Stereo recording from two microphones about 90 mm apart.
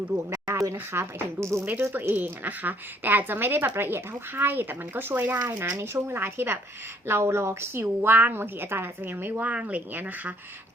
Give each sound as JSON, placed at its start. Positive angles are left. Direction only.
{"t": 0.3, "sound": "speech", "side_deg": -35}
{"t": 1.7, "sound": "a woman's voice", "side_deg": -20}